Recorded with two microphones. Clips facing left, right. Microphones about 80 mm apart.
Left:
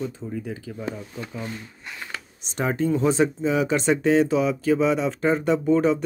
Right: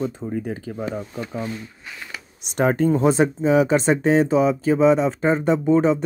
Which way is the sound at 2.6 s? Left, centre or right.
Right.